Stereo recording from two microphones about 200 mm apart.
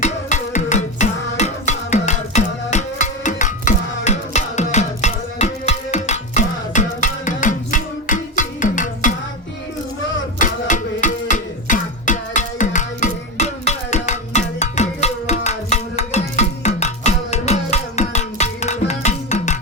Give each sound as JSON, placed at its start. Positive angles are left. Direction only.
{"t": 0.0, "sound": "music", "side_deg": 35}
{"t": 10.4, "sound": "music", "side_deg": 40}